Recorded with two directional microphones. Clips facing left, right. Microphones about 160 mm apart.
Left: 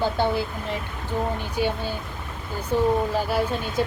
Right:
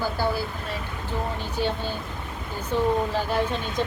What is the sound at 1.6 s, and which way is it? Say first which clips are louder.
Speech: left 1 dB; 10° left (ahead or behind).